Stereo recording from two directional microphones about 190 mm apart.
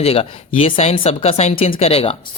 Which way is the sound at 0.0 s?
30° left (ahead or behind).